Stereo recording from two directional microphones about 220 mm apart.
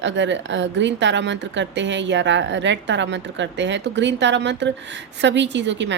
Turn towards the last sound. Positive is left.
turn(degrees=-55)  # may be behind; listen again after turning